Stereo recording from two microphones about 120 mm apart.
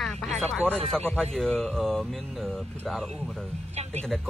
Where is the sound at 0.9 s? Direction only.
5° left (ahead or behind).